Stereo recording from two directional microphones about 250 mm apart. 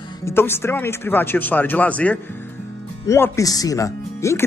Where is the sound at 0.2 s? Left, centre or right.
Centre.